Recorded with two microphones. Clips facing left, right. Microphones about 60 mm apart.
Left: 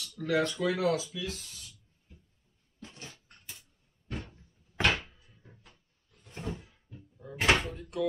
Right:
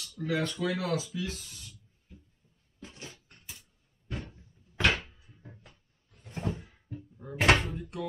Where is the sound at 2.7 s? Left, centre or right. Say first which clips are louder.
Right 1 dB; centre.